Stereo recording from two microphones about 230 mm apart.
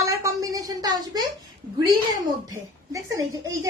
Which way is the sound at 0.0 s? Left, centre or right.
Centre.